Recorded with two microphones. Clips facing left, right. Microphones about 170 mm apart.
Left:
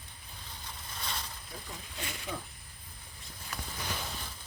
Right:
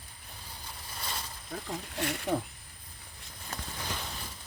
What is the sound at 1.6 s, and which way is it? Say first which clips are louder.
Speech: right 10 dB; 65° right (ahead or behind).